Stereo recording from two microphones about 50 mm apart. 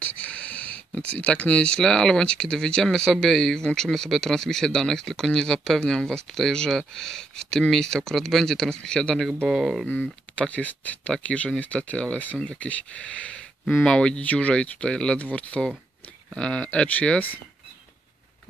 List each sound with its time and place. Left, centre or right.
0.0 s speech: left
9.5 s speech: centre
10.5 s speech: left
15.1 s speech: left